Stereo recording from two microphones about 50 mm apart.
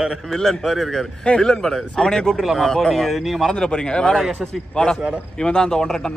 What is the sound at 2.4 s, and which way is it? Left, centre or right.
Speech, centre.